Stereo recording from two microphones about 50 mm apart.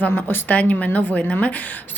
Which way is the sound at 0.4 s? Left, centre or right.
Left.